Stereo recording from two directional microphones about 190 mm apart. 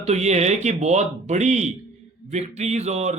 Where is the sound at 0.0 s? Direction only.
35° right (ahead or behind).